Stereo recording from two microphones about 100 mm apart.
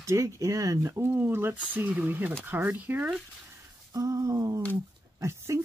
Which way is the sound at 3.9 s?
35° right (ahead or behind).